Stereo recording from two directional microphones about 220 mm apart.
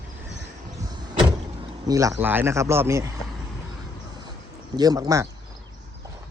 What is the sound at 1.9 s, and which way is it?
Speech, 15° right (ahead or behind).